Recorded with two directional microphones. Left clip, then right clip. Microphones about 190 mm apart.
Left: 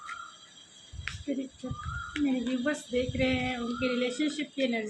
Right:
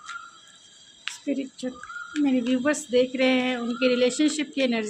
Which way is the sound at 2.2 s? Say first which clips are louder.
Right 7 dB; 60° right (ahead or behind).